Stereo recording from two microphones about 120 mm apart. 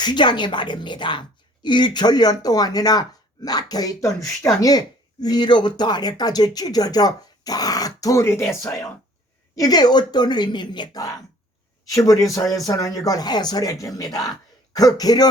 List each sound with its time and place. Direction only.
0.0 s speech: 40° left (ahead or behind)